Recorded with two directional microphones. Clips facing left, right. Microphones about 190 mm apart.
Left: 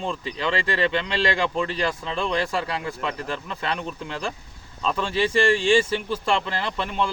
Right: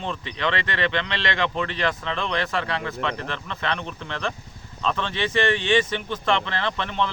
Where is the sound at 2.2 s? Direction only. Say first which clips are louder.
Left 2 dB; 10° left (ahead or behind).